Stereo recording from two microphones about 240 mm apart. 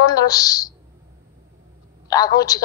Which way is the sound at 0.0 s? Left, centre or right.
Centre.